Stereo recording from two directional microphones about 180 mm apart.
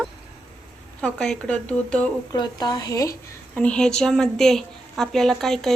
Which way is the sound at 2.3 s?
25° left (ahead or behind).